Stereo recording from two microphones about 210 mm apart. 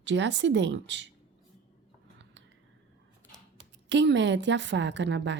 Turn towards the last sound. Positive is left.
turn(degrees=-55)  # may be behind; listen again after turning